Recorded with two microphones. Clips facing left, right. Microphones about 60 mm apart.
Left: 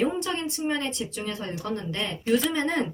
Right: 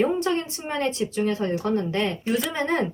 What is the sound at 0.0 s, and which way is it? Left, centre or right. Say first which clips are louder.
Speech: right 4 dB; right.